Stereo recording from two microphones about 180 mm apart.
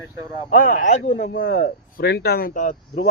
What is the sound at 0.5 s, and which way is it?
Speech, 50° left (ahead or behind).